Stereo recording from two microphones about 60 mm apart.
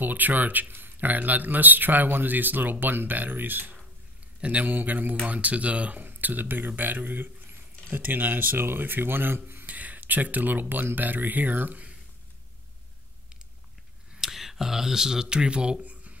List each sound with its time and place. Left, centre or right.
0.0 s a man's voice: right
9.7 s speech: right
14.1 s speech: centre
15.8 s a sound: right